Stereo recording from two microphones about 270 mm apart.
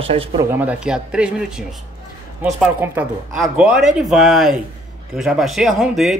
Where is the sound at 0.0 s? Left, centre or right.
Right.